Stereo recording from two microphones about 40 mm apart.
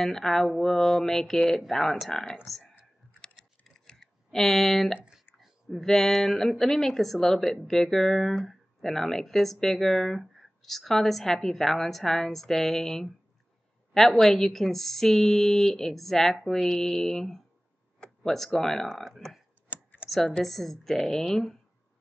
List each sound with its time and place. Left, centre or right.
0.0 s speech: centre
3.2 s scissors: centre
5.7 s speech: centre
19.7 s computer keyboard: right
20.4 s speech: centre